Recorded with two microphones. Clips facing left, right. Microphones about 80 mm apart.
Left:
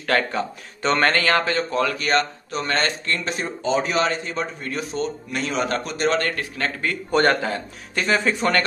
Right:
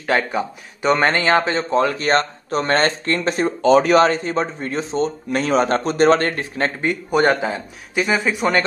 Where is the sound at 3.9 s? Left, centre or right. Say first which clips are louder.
Right 8 dB; right; by 8.6 s centre.